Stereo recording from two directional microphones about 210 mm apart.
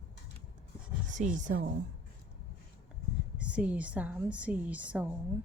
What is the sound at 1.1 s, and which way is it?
Speech, 35° right (ahead or behind).